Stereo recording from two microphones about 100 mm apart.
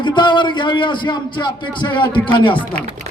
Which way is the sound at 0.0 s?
50° left (ahead or behind).